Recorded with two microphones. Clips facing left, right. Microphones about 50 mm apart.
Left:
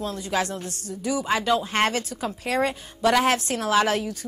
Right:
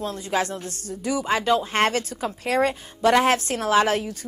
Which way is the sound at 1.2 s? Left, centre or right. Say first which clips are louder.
Right 2 dB; right.